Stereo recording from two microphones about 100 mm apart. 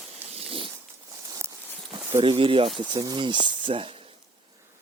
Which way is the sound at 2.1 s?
65° right (ahead or behind).